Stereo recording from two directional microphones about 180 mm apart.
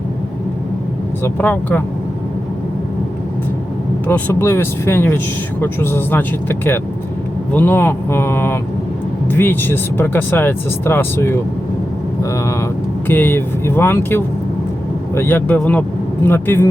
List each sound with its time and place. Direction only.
1.2 s speech: 10° left (ahead or behind)
4.0 s speech: 10° left (ahead or behind)